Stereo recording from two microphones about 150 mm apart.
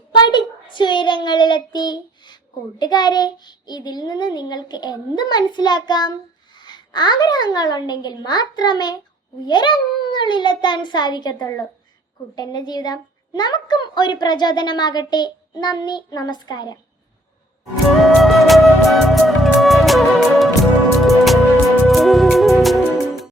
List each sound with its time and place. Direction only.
0.2 s a child's voice: 30° left (ahead or behind)
18.2 s music: centre (ahead or behind)